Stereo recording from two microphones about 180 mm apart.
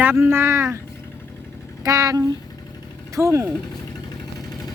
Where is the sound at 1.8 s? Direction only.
20° right (ahead or behind).